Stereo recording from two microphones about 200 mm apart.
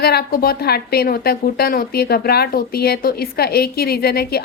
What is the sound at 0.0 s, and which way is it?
Speech, 50° left (ahead or behind).